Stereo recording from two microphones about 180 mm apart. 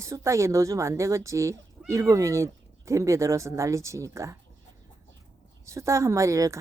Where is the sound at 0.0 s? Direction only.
15° right (ahead or behind).